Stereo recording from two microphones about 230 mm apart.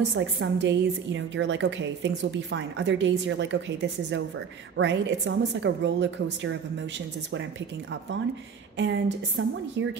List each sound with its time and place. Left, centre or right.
0.0 s a woman's voice: right
8.7 s a woman's voice: right